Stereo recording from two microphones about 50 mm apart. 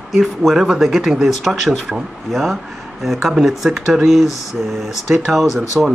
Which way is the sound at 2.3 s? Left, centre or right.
Centre.